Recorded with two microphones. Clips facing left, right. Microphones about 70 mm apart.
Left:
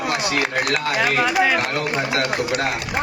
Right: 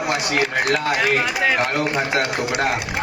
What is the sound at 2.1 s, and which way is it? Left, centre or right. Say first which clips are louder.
Speech: even; right.